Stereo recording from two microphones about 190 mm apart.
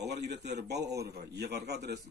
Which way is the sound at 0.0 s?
60° right (ahead or behind).